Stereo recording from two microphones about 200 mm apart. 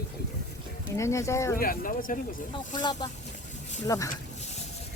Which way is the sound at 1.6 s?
45° left (ahead or behind).